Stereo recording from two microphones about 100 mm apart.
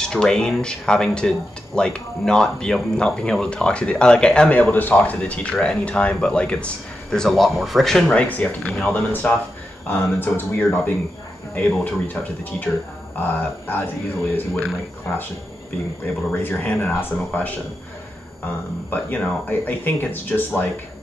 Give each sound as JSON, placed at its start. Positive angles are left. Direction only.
{"t": 0.0, "sound": "speech", "side_deg": 5}
{"t": 15.1, "sound": "speech", "side_deg": 25}
{"t": 16.3, "sound": "speech", "side_deg": 15}
{"t": 18.9, "sound": "speech", "side_deg": 15}